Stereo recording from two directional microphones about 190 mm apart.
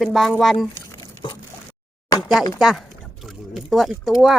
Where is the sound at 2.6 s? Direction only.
Centre (ahead or behind).